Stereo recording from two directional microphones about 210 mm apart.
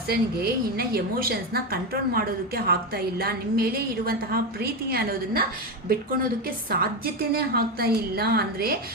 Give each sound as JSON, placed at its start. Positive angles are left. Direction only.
{"t": 0.1, "sound": "a woman's voice", "side_deg": -45}
{"t": 6.7, "sound": "a woman's voice", "side_deg": -45}